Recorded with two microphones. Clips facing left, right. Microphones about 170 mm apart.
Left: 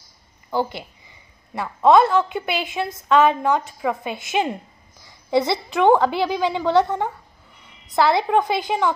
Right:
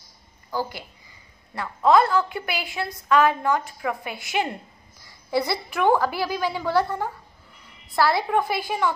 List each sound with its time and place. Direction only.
0.5 s a woman's voice: 25° left (ahead or behind)